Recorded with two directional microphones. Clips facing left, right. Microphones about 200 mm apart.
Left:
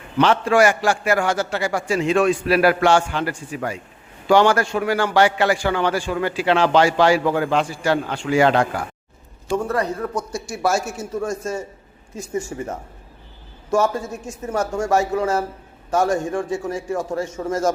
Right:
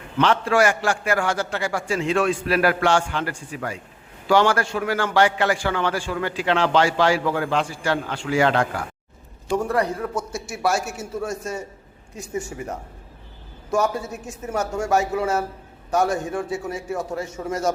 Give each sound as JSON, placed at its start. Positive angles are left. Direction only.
{"t": 0.2, "sound": "a man's voice", "side_deg": 15}
{"t": 9.6, "sound": "a man's voice", "side_deg": -15}
{"t": 10.3, "sound": "a man's voice", "side_deg": 0}
{"t": 14.3, "sound": "a man's voice", "side_deg": 0}